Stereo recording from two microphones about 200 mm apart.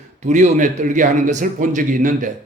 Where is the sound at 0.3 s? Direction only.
35° right (ahead or behind).